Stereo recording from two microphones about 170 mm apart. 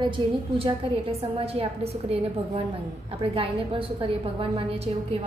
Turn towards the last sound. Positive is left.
turn(degrees=-35)  # may be behind; listen again after turning